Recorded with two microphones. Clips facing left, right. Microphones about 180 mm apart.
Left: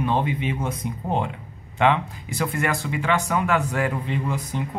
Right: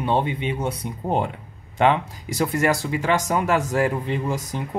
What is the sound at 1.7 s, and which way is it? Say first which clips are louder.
Speech: right 1 dB; 35° right (ahead or behind).